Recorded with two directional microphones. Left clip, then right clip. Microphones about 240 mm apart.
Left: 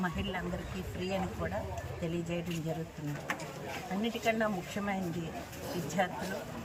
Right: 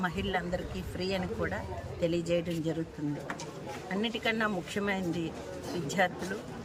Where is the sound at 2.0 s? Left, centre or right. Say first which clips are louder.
Right 9 dB; centre.